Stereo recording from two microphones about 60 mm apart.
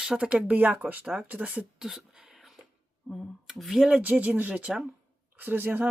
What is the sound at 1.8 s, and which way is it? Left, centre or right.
Speech, centre.